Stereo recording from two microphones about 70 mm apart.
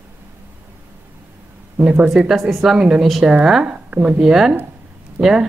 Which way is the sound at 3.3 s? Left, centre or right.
Centre.